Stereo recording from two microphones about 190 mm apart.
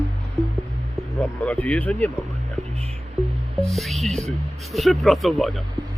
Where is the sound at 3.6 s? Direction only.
Centre (ahead or behind).